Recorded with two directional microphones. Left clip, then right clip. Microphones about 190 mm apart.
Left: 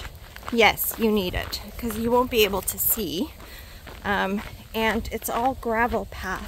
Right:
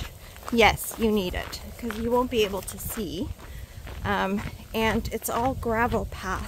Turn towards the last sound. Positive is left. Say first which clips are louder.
# left 1 dB
turn(degrees=0)  # may be behind; listen again after turning